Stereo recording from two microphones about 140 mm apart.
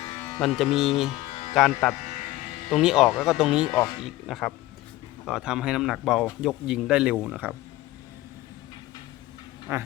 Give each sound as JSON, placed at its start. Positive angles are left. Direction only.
{"t": 0.3, "sound": "speech", "side_deg": 0}
{"t": 9.7, "sound": "speech", "side_deg": -20}